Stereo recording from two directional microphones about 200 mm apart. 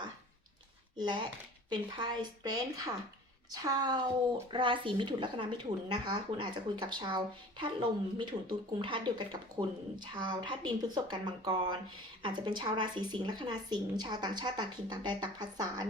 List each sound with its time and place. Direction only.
0.9 s speech: 20° right (ahead or behind)